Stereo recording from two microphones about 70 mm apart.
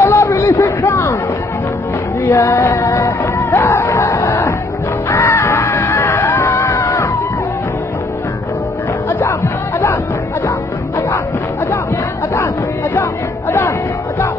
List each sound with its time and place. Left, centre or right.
0.0 s a sound: left
2.2 s music: left
9.2 s music: left
12.9 s music: left